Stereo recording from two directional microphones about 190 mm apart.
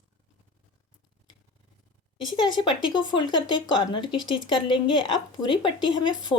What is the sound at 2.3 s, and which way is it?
A woman's voice, 25° left (ahead or behind).